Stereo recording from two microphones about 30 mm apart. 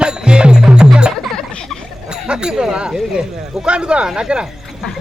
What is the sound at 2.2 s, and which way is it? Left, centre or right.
Speech, right.